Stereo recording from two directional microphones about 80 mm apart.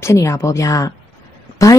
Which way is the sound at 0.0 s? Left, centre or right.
Left.